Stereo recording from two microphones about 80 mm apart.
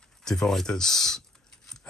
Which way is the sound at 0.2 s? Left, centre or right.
Centre.